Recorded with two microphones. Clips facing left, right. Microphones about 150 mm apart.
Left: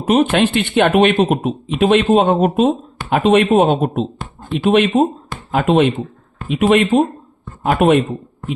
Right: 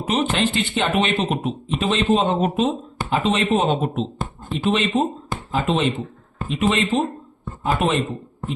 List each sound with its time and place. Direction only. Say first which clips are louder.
0.0 s speech: left 7 dB; 55° left (ahead or behind)